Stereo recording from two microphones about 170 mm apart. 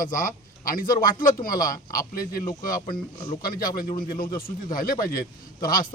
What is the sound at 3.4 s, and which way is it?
A man's voice, 55° left (ahead or behind).